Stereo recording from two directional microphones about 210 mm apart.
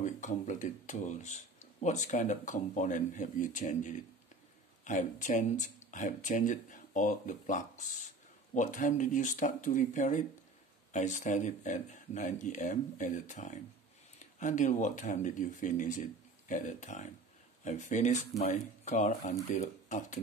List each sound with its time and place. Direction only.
0.0 s speech: 35° left (ahead or behind)